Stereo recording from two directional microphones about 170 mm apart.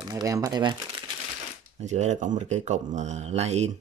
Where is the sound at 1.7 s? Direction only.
45° right (ahead or behind).